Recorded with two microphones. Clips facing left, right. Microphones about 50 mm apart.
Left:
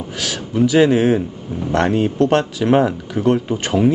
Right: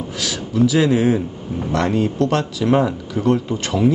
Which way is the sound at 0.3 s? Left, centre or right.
Centre.